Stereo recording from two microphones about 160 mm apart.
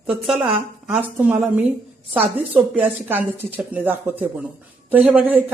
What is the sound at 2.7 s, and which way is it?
Speech, 10° right (ahead or behind).